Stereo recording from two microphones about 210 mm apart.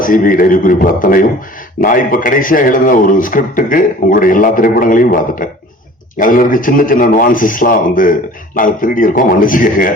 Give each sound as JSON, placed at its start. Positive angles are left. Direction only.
{"t": 0.0, "sound": "a man's voice", "side_deg": 40}